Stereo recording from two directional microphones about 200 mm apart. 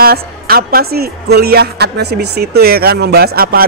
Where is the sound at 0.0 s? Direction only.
50° right (ahead or behind).